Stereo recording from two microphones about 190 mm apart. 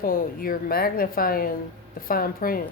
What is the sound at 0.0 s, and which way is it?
Speech, 50° left (ahead or behind).